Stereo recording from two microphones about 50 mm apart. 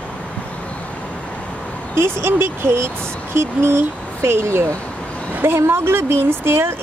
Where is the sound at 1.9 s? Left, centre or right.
Right.